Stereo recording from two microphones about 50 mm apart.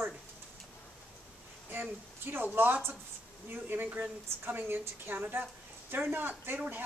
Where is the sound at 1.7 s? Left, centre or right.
Right.